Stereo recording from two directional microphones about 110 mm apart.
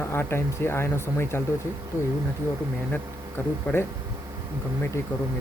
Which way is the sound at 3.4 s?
20° left (ahead or behind).